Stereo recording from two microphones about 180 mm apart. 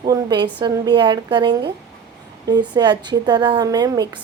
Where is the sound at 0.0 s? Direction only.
25° right (ahead or behind).